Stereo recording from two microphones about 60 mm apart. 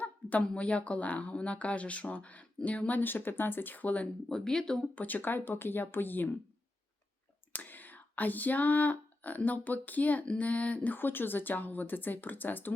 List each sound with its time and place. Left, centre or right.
0.0 s speech: left
4.3 s speech: centre
4.9 s speech: left
7.5 s speech: left